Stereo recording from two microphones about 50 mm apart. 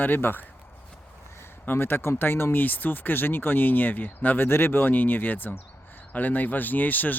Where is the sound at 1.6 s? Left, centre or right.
Left.